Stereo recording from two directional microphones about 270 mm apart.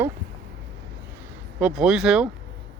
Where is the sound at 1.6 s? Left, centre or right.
Centre.